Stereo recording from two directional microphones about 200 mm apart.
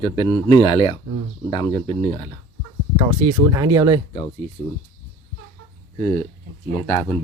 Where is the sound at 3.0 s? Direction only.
20° right (ahead or behind).